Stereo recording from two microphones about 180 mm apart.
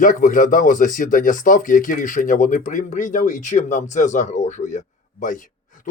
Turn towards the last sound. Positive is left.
turn(degrees=45)  # may be behind; listen again after turning